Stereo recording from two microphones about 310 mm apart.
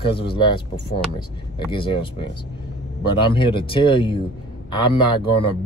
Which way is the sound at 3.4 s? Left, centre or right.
Centre.